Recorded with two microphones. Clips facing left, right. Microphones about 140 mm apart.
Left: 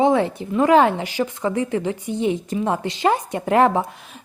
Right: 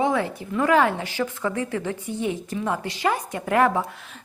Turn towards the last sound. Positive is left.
turn(degrees=25)  # may be behind; listen again after turning